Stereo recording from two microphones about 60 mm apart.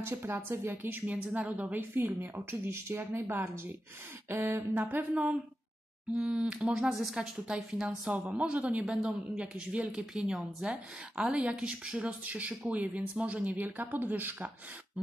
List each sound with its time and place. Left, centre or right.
0.1 s a woman's voice: right
5.1 s a woman's voice: right